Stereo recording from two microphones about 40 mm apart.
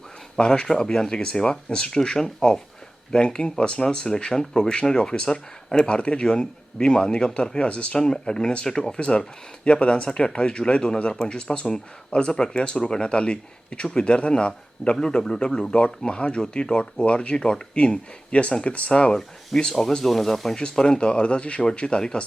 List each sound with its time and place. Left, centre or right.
0.3 s speech: left
7.6 s speech: left
7.9 s speech: centre
19.5 s speech: centre
20.6 s speech: centre